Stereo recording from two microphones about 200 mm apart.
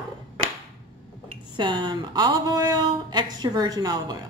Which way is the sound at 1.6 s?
25° right (ahead or behind).